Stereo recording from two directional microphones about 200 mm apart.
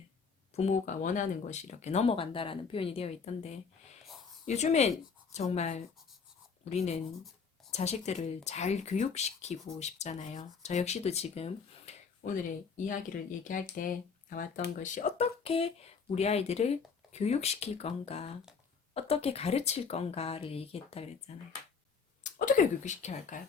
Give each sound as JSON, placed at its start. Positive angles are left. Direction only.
{"t": 0.5, "sound": "speech", "side_deg": 35}